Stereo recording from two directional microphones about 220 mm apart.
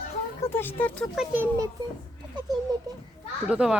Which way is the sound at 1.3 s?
10° right (ahead or behind).